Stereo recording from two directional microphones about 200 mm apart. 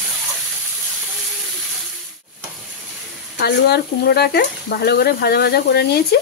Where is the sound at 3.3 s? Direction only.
55° left (ahead or behind).